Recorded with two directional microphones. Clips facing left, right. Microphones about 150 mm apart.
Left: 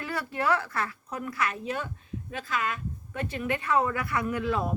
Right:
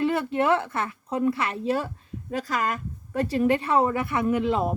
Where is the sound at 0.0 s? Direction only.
25° right (ahead or behind).